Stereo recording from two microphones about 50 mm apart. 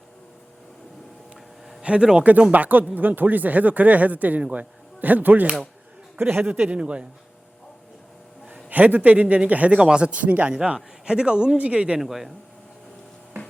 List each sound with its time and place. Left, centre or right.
1.8 s speech: right
2.5 s speech: right
8.4 s a man's voice: right
9.7 s speech: centre
10.2 s speech: right
11.0 s speech: centre
11.9 s speech: centre